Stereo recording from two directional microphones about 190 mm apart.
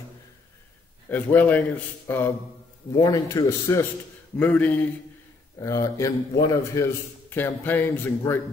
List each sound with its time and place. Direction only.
1.1 s a man's voice: 10° left (ahead or behind)